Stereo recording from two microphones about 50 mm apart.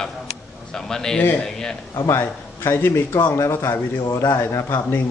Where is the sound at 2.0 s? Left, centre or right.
Left.